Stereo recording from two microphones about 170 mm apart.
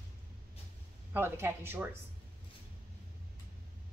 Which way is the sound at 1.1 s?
15° right (ahead or behind).